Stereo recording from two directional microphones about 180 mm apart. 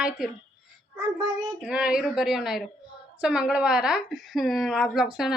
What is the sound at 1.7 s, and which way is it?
A child's voice, 5° right (ahead or behind).